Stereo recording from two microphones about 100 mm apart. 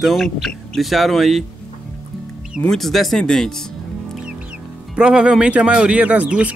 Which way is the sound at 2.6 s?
5° left (ahead or behind).